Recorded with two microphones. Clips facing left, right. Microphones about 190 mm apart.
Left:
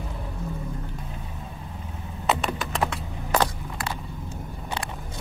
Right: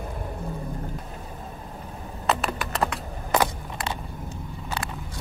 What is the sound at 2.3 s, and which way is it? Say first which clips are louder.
Typing: even; centre (ahead or behind).